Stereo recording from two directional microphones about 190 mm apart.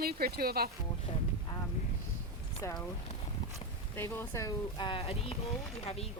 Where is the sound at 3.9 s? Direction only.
15° left (ahead or behind); by 5.5 s 35° left (ahead or behind).